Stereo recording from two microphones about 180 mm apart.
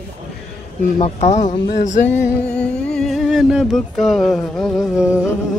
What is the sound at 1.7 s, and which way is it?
Music, 45° left (ahead or behind).